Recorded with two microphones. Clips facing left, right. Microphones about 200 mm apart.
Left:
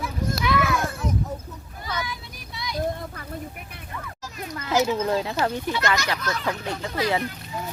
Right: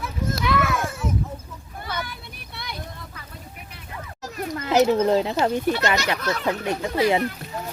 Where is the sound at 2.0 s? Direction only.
60° right (ahead or behind).